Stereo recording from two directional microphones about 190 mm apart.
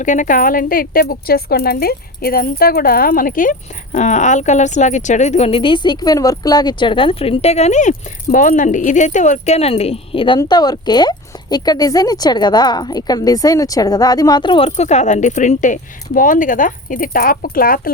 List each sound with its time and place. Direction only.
0.0 s speech: 40° left (ahead or behind)